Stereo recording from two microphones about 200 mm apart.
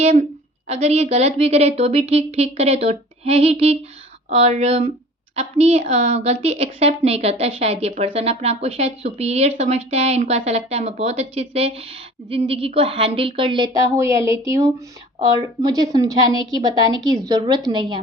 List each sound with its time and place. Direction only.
0.0 s a woman's voice: 35° right (ahead or behind)